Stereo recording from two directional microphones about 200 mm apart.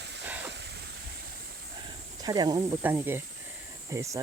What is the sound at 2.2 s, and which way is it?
Speech, 20° right (ahead or behind).